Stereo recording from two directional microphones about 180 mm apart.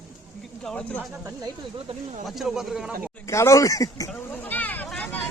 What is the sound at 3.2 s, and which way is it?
Speech, 15° left (ahead or behind).